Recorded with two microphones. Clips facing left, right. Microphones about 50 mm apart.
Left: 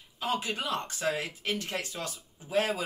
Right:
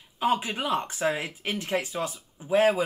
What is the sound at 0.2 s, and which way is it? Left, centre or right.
Speech, right.